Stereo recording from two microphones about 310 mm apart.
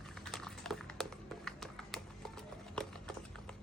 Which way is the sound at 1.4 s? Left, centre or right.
Centre.